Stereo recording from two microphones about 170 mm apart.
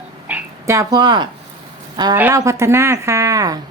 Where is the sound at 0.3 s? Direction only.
15° right (ahead or behind).